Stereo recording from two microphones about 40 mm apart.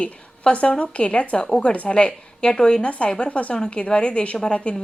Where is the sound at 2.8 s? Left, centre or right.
Left.